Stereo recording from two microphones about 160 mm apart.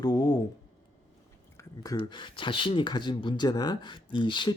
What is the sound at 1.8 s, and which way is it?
Speech, 25° left (ahead or behind).